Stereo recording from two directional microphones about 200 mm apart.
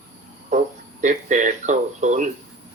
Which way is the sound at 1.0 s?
40° right (ahead or behind).